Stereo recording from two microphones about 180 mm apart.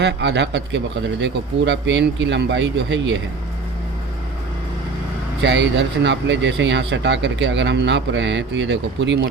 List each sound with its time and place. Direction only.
0.0 s speech: 75° right (ahead or behind)
5.4 s speech: 80° right